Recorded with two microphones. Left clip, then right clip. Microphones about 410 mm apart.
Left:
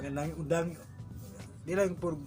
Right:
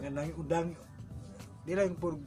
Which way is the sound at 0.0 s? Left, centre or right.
Right.